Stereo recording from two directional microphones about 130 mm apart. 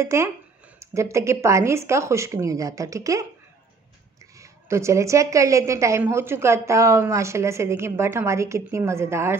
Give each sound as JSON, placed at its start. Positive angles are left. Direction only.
{"t": 0.0, "sound": "a woman's voice", "side_deg": -20}
{"t": 4.4, "sound": "a woman's voice", "side_deg": -20}